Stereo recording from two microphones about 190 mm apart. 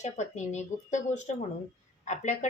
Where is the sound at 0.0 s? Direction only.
40° left (ahead or behind).